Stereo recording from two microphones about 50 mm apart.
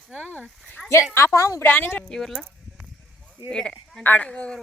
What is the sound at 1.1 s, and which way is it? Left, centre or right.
Speech, left.